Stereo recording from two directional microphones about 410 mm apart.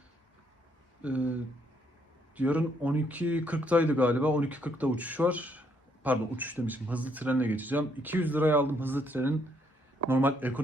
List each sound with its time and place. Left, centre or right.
1.0 s speech: centre
2.3 s speech: centre